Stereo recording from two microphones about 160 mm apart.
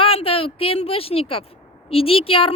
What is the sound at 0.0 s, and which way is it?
Speech, 35° left (ahead or behind).